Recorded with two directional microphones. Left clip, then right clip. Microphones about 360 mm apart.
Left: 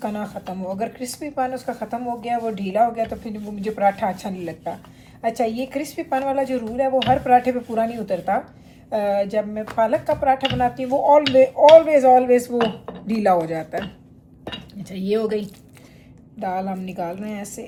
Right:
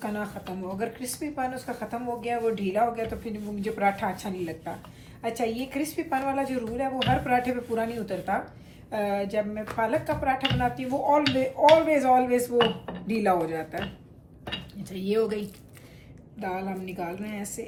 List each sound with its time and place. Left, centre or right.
0.0 s speech: left
14.8 s speech: left
16.4 s speech: left